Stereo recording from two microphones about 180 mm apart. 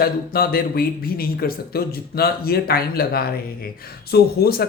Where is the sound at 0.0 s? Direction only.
55° left (ahead or behind).